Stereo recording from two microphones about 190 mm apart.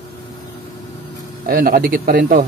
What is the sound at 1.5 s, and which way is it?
Speech, 50° right (ahead or behind).